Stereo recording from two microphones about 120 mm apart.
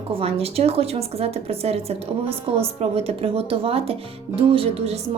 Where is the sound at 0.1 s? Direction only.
55° right (ahead or behind).